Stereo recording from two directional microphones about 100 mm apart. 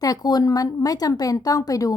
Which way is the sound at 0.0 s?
40° left (ahead or behind).